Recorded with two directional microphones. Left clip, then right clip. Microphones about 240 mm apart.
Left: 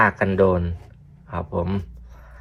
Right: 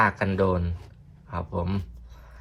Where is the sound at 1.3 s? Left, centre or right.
Centre.